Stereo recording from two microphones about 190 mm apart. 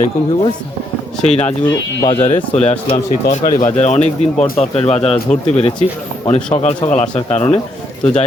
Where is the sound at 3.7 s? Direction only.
35° left (ahead or behind).